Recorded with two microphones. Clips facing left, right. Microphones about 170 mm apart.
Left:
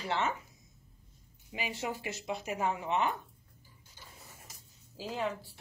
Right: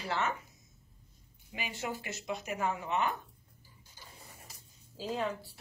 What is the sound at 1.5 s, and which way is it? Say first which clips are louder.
Speech: left 2 dB; 25° left (ahead or behind).